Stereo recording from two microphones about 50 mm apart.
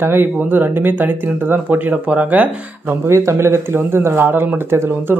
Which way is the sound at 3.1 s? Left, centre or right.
Right.